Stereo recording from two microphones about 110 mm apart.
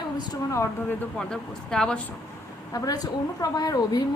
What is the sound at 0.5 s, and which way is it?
Speech, 25° left (ahead or behind).